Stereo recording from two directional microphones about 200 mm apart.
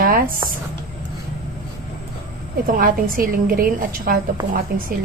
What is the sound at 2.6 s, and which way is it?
A woman's voice, 45° right (ahead or behind).